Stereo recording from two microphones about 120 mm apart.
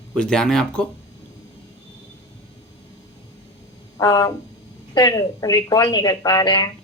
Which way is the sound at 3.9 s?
35° left (ahead or behind).